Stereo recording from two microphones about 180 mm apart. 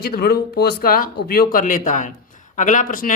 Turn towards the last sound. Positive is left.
turn(degrees=45)  # may be behind; listen again after turning